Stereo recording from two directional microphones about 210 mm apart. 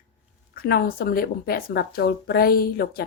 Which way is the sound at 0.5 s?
45° left (ahead or behind).